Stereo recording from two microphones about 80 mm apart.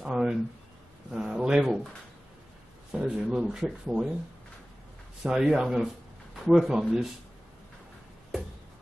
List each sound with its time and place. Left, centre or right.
0.0 s a sound: centre
2.9 s speech: centre
5.2 s speech: centre